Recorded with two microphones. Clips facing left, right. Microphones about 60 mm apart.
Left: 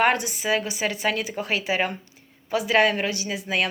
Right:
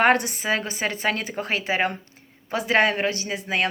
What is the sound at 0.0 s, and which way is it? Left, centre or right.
Speech, right.